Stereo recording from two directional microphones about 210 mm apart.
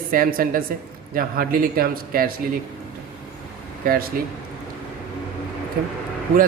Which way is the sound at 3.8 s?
45° right (ahead or behind).